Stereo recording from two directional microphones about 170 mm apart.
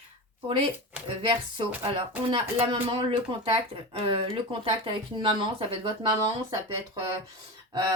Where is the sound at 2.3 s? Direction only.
35° right (ahead or behind).